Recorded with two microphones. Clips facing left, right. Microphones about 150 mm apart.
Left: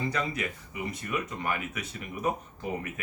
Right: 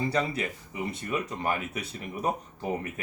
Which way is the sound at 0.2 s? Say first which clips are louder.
Right 3 dB; 35° right (ahead or behind).